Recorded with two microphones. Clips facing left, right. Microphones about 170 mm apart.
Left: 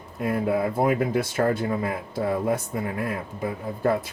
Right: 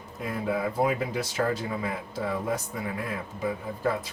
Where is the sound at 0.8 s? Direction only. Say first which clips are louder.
Left 4 dB; 50° left (ahead or behind).